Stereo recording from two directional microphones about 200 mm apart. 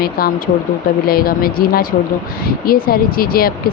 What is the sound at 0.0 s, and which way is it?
Speech, 50° left (ahead or behind).